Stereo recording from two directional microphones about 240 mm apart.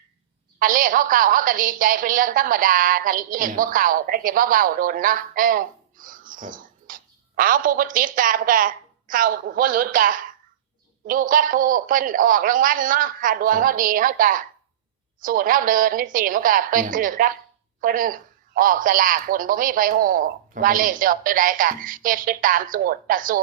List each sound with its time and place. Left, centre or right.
0.6 s a woman's voice: right